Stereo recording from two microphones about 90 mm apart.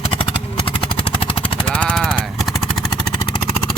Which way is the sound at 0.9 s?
90° left.